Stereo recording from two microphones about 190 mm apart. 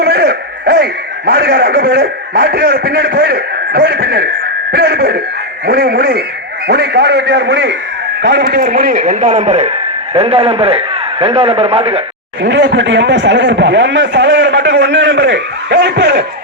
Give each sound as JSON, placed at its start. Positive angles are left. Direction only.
{"t": 0.0, "sound": "a man's voice", "side_deg": -55}
{"t": 12.4, "sound": "speech", "side_deg": -70}